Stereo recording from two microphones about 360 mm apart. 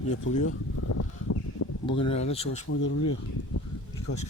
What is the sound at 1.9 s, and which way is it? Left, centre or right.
Speech, centre.